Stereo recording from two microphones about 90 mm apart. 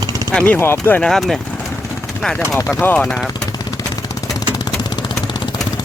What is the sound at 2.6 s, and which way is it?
Speech, 30° left (ahead or behind).